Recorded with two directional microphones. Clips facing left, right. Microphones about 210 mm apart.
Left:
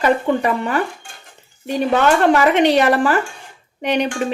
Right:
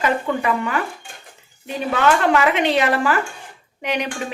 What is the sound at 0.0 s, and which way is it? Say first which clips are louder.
Speech: left 4 dB; 35° left (ahead or behind).